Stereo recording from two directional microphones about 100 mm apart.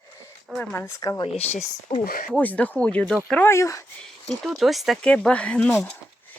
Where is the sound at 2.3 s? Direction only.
15° left (ahead or behind).